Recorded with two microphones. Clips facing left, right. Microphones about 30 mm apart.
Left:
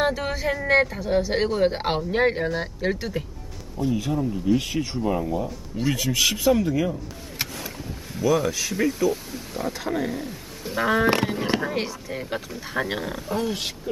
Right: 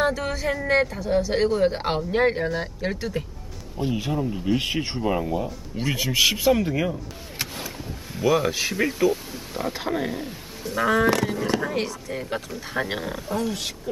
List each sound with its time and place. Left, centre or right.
0.0 s speech: centre
3.7 s speech: right
8.2 s speech: right
10.6 s speech: centre
11.2 s speech: left
11.6 s speech: centre
13.4 s speech: centre